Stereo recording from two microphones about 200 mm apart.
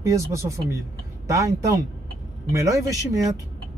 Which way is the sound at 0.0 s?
15° right (ahead or behind).